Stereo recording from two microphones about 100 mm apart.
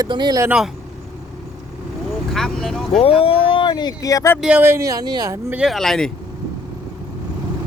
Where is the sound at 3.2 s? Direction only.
65° left (ahead or behind); by 4.3 s 35° left (ahead or behind).